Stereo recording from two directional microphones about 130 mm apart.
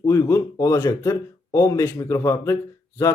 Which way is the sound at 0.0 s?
20° left (ahead or behind).